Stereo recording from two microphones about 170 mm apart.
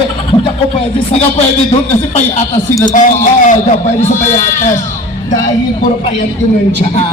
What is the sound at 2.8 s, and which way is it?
A man's voice, 50° left (ahead or behind).